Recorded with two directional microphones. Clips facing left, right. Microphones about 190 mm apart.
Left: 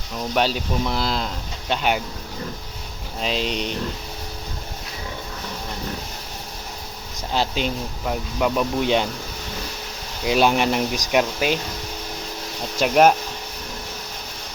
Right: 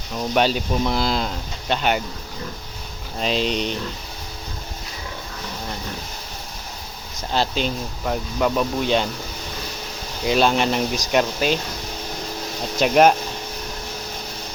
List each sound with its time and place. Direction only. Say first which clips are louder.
0.3 s speech: right 2 dB; centre (ahead or behind)
3.2 s speech: right 3 dB; centre (ahead or behind)
7.3 s speech: right 1 dB; 10° left (ahead or behind)
10.2 s speech: even; 10° left (ahead or behind)
12.8 s speech: right 1 dB; centre (ahead or behind)